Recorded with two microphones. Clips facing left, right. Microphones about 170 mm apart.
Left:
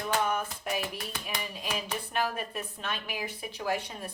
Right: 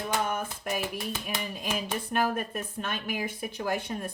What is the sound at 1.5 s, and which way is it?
A woman's voice, 50° right (ahead or behind).